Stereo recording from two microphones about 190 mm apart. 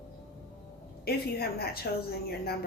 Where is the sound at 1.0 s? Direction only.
55° left (ahead or behind).